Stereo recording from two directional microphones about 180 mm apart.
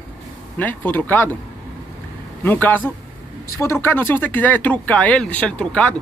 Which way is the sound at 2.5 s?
10° left (ahead or behind).